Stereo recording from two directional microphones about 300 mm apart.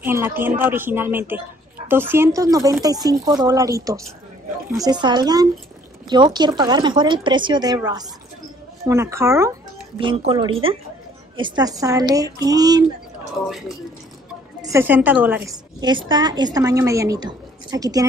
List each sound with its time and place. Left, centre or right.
0.0 s a woman's voice: centre
13.5 s a woman's voice: centre